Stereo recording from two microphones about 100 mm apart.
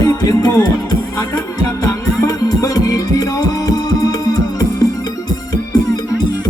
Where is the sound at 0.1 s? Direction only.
30° left (ahead or behind).